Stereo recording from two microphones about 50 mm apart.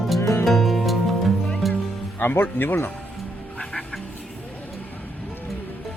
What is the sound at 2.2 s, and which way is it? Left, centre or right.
Speech, left.